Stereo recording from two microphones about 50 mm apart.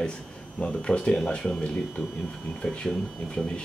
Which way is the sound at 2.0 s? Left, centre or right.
Left.